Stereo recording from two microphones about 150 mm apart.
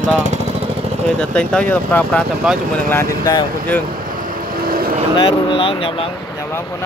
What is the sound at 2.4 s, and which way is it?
Speech, 5° right (ahead or behind).